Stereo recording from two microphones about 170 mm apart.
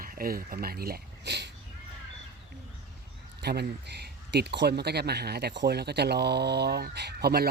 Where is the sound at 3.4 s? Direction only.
75° right (ahead or behind).